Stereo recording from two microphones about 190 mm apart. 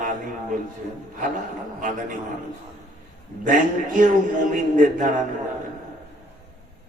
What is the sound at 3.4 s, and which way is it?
A man's voice, 45° right (ahead or behind).